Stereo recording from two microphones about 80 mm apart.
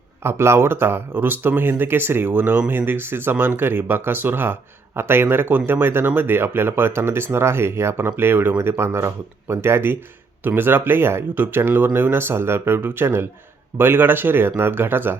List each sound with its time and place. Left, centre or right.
0.2 s speech: right